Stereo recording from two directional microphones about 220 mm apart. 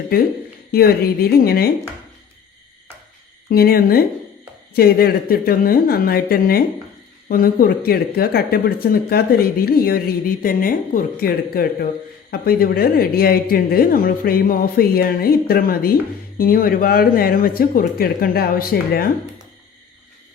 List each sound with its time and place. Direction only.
0.7 s speech: 45° left (ahead or behind)
3.5 s speech: 45° left (ahead or behind)